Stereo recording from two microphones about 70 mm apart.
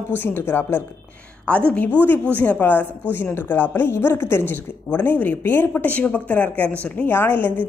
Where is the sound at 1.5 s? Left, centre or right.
Centre.